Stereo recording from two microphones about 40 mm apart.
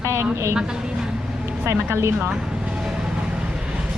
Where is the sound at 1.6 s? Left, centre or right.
Right.